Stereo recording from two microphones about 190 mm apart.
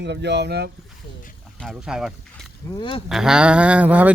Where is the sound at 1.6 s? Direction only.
Centre (ahead or behind).